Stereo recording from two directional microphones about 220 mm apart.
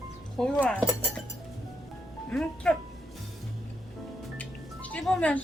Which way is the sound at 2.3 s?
5° left (ahead or behind).